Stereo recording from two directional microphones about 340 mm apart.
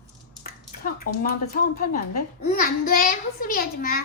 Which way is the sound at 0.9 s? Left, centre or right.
Left.